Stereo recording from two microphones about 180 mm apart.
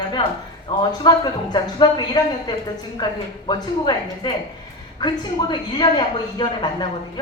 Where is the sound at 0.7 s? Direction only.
25° left (ahead or behind).